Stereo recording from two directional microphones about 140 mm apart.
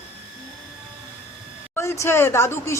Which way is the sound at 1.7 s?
20° left (ahead or behind).